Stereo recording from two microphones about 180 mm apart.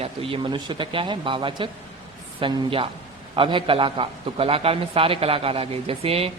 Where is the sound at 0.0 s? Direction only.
30° right (ahead or behind).